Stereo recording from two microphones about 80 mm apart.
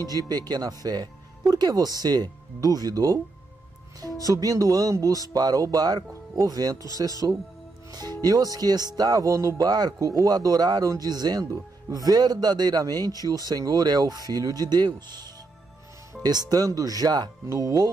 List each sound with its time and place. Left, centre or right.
0.3 s speech: right
4.3 s speech: right
9.7 s a man's voice: right
9.9 s a man's voice: right
17.5 s speech: right